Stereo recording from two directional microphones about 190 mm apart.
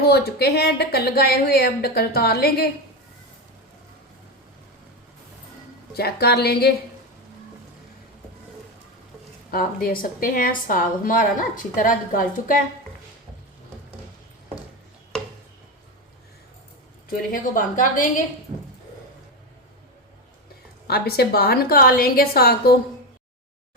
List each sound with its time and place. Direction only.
0.0 s speech: 55° left (ahead or behind)
6.0 s speech: 55° left (ahead or behind)
9.5 s a woman's voice: 50° left (ahead or behind)
17.1 s a woman's voice: 45° left (ahead or behind)
20.8 s a woman's voice: 55° left (ahead or behind)